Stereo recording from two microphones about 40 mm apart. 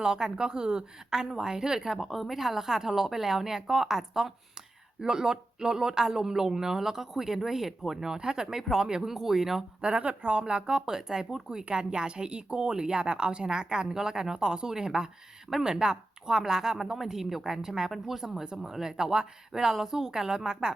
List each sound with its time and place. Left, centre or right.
0.0 s speech: centre
9.0 s speech: centre
9.8 s speech: right